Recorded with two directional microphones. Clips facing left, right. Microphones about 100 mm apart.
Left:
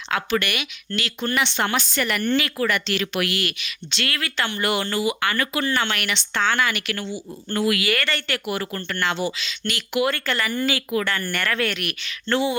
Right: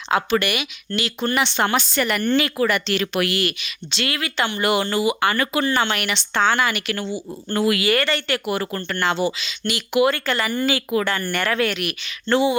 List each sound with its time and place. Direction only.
0.1 s speech: 25° right (ahead or behind)
2.6 s speech: 20° right (ahead or behind)
3.0 s speech: 35° right (ahead or behind)
3.6 s speech: 20° right (ahead or behind)